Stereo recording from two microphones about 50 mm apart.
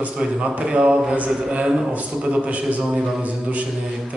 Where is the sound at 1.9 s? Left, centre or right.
Right.